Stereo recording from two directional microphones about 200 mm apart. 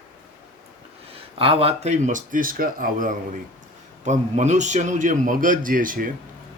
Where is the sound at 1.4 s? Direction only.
30° right (ahead or behind).